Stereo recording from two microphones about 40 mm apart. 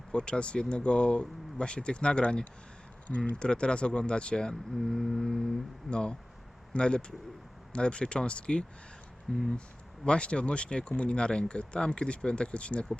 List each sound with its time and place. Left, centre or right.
0.1 s speech: left
4.8 s a sound: centre
5.9 s speech: left